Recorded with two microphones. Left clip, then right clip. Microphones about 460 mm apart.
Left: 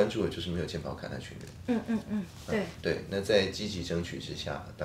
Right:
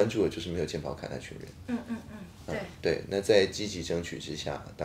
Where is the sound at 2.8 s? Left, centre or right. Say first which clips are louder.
Right 3 dB; right.